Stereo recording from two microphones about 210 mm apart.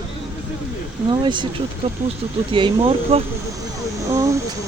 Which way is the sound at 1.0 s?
20° right (ahead or behind).